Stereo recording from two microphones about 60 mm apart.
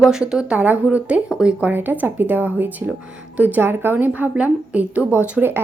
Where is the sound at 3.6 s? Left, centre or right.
Right.